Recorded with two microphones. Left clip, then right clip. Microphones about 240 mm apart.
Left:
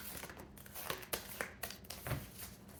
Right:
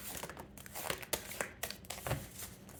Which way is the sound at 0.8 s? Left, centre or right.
Right.